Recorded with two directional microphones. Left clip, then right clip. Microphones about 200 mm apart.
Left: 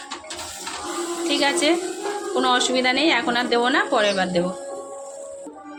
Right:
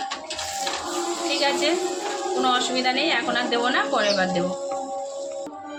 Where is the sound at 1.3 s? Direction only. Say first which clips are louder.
Left 3 dB; 50° left (ahead or behind).